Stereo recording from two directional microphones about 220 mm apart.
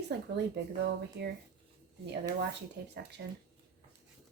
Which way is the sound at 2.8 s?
50° right (ahead or behind).